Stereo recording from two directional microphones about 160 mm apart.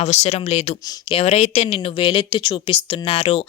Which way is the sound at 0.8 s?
25° left (ahead or behind).